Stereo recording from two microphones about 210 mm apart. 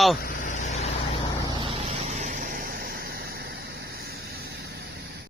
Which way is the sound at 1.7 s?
30° right (ahead or behind).